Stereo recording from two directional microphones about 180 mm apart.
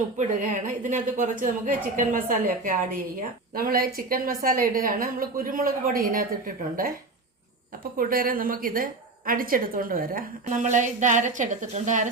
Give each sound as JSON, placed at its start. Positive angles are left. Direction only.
{"t": 0.2, "sound": "a woman's voice", "side_deg": -45}
{"t": 7.9, "sound": "a woman's voice", "side_deg": -50}